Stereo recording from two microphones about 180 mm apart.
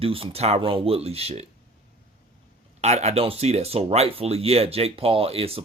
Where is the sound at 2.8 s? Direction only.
35° right (ahead or behind).